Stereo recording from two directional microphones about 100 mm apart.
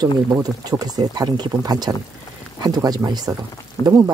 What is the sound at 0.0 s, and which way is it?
Speech, 40° right (ahead or behind).